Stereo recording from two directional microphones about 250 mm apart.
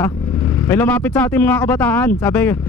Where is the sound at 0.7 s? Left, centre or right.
Centre.